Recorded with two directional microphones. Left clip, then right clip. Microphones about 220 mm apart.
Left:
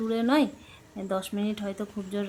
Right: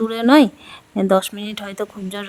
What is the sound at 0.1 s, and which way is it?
Speech, 50° right (ahead or behind).